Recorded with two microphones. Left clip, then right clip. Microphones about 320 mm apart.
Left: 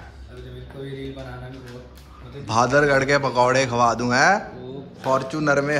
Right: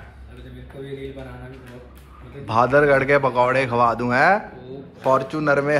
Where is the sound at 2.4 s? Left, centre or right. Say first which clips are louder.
Right 2 dB; centre.